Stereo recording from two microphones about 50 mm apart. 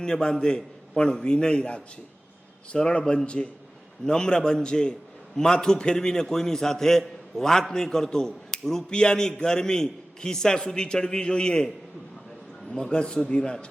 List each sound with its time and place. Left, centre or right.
0.0 s a man's voice: centre
12.7 s a man's voice: centre